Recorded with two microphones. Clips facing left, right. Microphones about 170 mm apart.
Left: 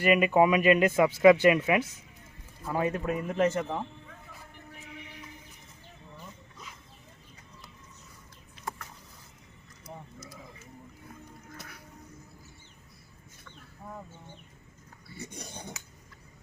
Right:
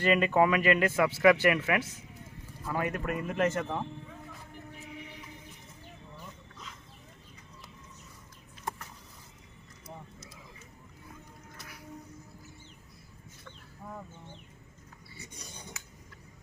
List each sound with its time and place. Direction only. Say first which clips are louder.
0.0 s speech: left 2 dB; 15° left (ahead or behind)
9.8 s wild animals: left 2 dB; 25° right (ahead or behind)
13.8 s chicken: even; 10° left (ahead or behind)